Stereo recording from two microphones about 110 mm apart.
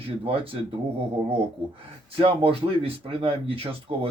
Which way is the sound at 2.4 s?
60° right (ahead or behind).